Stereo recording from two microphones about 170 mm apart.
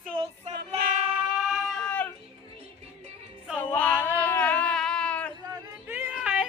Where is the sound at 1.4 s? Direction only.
5° left (ahead or behind).